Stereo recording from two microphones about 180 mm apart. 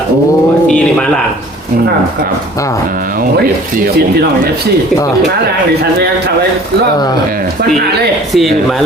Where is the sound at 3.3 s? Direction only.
60° right (ahead or behind).